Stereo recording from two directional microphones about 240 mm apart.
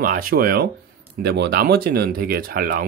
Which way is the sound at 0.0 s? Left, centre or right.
Right.